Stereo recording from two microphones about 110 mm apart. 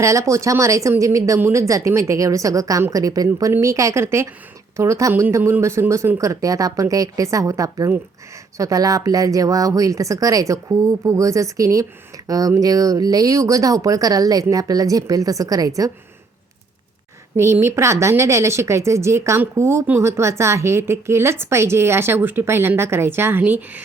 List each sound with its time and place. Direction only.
0.0 s speech: 30° right (ahead or behind)
17.3 s speech: 25° right (ahead or behind)